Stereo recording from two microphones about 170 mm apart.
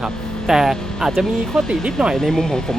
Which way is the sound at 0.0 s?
5° left (ahead or behind).